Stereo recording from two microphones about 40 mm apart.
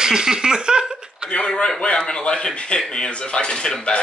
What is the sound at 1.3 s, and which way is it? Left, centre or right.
A man's voice, left.